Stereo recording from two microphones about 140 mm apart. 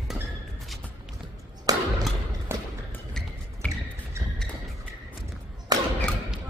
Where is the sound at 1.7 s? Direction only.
25° right (ahead or behind).